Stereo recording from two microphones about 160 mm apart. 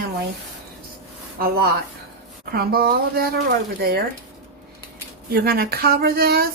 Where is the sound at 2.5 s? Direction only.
75° right (ahead or behind).